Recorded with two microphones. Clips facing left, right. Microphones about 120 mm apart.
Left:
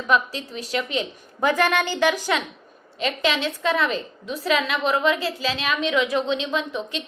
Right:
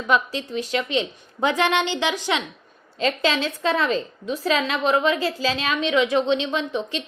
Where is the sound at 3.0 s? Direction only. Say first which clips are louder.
Right 1 dB; 30° right (ahead or behind).